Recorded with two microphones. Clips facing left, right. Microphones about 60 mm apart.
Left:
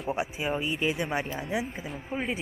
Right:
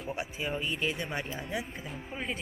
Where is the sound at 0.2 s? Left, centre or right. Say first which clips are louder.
Left 5 dB; centre.